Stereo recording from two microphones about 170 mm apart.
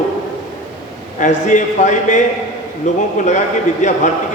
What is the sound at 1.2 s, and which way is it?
A man's voice, 45° left (ahead or behind).